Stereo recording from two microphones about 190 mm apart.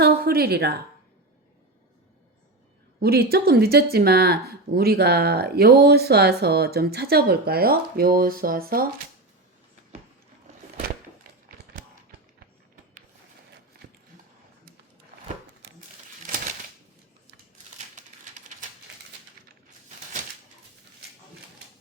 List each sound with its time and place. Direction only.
0.0 s a woman's voice: 55° right (ahead or behind)
3.0 s speech: 55° right (ahead or behind)
16.2 s a sound: 45° right (ahead or behind)